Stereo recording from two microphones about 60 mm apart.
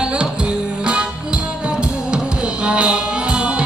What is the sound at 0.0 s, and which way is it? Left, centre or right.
Music, centre.